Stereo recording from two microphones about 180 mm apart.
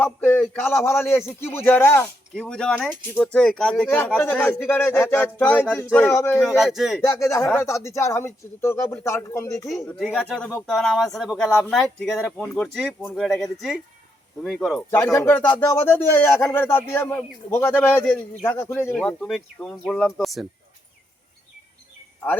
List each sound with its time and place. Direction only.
0.0 s speech: 10° left (ahead or behind)
6.3 s speech: centre (ahead or behind)
7.0 s speech: 15° left (ahead or behind)
9.9 s speech: 5° left (ahead or behind)
14.8 s speech: 15° left (ahead or behind)